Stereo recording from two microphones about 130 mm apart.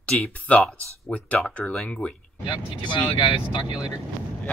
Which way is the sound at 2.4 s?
35° left (ahead or behind).